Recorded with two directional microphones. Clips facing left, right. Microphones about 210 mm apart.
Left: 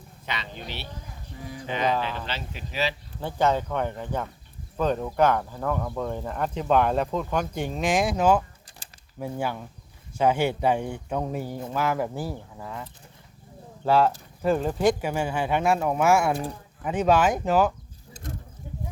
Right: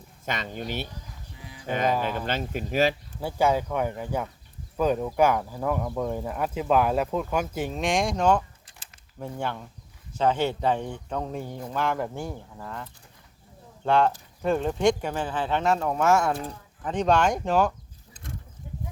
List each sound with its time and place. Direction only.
0.3 s speech: 45° right (ahead or behind)
1.4 s speech: 45° left (ahead or behind)
1.6 s speech: 50° right (ahead or behind)
1.9 s speech: 10° right (ahead or behind)
2.2 s speech: 50° right (ahead or behind)
3.2 s speech: 10° right (ahead or behind)